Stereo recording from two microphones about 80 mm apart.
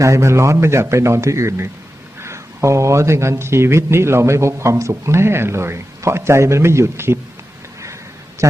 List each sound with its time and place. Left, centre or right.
0.0 s speech: right